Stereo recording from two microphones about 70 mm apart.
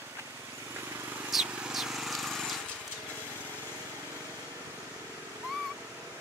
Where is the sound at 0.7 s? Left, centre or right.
Right.